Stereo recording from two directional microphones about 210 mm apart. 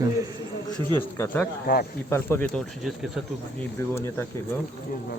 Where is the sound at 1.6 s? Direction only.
45° left (ahead or behind).